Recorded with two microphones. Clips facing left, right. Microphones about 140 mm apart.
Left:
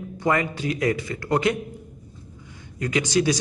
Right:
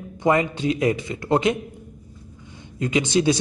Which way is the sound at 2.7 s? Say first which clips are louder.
Right 2 dB; 25° right (ahead or behind).